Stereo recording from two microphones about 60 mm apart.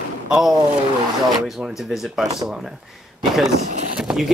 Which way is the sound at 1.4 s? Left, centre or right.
Centre.